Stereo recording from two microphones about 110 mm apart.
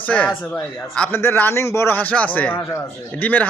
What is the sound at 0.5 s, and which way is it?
Speech, 15° left (ahead or behind).